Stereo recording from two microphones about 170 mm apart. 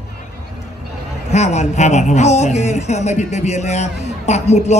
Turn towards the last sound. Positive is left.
turn(degrees=40)  # may be behind; listen again after turning